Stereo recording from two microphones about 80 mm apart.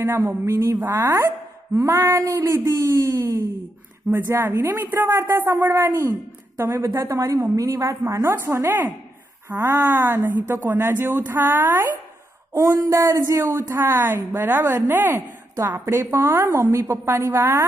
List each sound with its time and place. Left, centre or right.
0.0 s a woman's voice: right
9.8 s a man's voice: right
12.5 s a man's voice: right